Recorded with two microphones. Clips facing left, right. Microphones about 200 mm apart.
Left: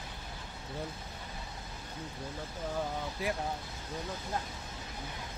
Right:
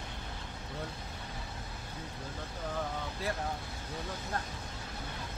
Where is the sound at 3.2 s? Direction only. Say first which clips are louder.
Left 2 dB; 15° left (ahead or behind).